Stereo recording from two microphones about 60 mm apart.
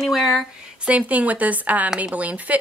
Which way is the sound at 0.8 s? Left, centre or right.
Right.